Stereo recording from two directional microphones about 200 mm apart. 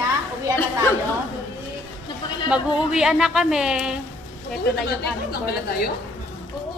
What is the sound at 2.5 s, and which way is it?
Speech, 5° right (ahead or behind).